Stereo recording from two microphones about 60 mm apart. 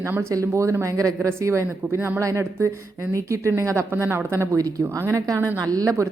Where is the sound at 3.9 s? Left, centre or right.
Right.